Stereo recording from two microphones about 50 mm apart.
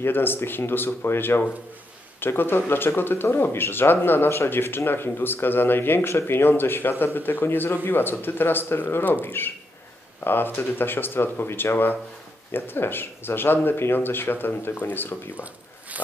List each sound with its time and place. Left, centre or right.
0.0 s speech: left